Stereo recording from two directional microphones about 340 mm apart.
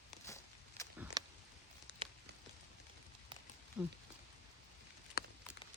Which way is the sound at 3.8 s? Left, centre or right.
Centre.